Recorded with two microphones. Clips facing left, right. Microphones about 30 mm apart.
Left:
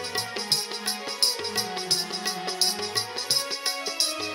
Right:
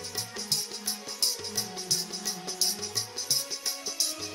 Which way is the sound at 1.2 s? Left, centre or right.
Left.